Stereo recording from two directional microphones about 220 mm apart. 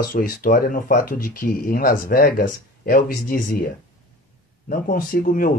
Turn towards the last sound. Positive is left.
turn(degrees=40)  # may be behind; listen again after turning